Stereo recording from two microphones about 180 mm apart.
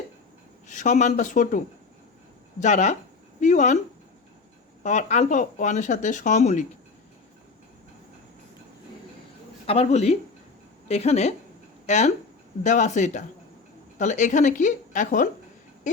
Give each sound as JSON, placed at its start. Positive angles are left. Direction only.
{"t": 0.7, "sound": "speech", "side_deg": 45}
{"t": 4.8, "sound": "speech", "side_deg": 40}
{"t": 9.6, "sound": "speech", "side_deg": 35}